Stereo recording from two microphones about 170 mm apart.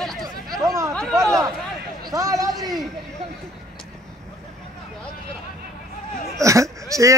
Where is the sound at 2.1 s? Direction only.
20° right (ahead or behind).